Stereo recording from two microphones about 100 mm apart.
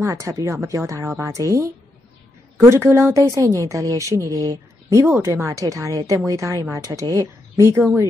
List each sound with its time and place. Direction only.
0.0 s a woman's voice: 30° right (ahead or behind)
5.0 s a woman's voice: 25° right (ahead or behind)